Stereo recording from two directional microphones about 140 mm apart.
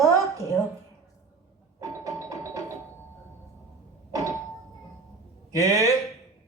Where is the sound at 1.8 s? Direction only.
25° right (ahead or behind).